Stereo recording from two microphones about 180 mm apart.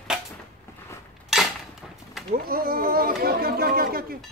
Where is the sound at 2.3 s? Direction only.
55° right (ahead or behind).